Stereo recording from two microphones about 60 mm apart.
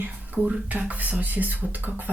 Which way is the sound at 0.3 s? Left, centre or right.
Centre.